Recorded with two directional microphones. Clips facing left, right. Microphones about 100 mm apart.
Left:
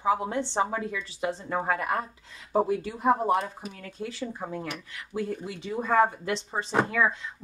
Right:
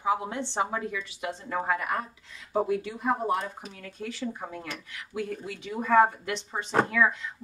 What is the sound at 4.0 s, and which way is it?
Speech, 20° left (ahead or behind).